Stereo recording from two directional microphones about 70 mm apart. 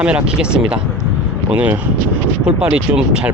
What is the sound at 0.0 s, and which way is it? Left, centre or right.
Speech, centre.